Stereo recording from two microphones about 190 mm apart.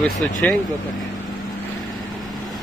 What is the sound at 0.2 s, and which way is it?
Speech, 5° left (ahead or behind).